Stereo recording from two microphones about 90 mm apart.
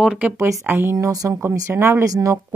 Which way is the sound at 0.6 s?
25° right (ahead or behind).